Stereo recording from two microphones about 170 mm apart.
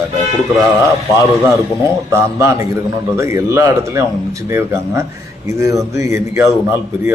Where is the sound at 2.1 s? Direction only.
15° right (ahead or behind).